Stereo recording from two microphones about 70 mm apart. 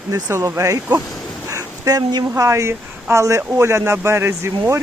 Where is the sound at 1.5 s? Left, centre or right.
Right.